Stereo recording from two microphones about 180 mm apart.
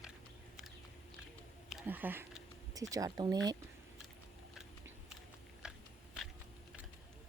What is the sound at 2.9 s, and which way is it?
Speech, 20° right (ahead or behind).